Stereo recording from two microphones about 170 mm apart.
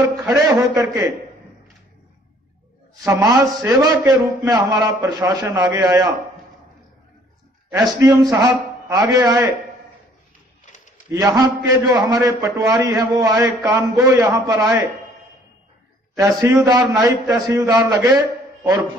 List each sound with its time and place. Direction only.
0.0 s a man's voice: 20° right (ahead or behind)
3.1 s a man's voice: 20° right (ahead or behind)
7.7 s a man's voice: 20° right (ahead or behind)
10.6 s a sound: 45° left (ahead or behind)
11.1 s a man's voice: 20° right (ahead or behind)
16.2 s a man's voice: 20° right (ahead or behind)